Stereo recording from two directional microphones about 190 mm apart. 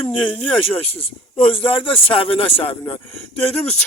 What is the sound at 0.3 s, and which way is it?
Speech, 10° left (ahead or behind).